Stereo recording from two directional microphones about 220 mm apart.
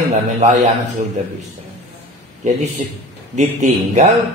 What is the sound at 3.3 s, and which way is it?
Speech, 30° right (ahead or behind).